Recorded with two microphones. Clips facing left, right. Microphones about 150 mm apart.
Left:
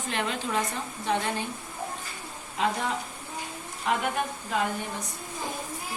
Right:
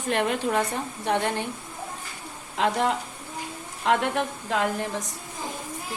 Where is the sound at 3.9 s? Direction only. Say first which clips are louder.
Right 4 dB; 90° right.